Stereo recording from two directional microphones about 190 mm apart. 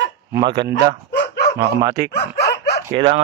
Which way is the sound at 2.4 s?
60° left (ahead or behind).